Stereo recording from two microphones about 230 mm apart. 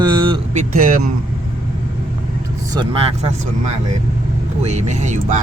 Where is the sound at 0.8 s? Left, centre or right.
Right.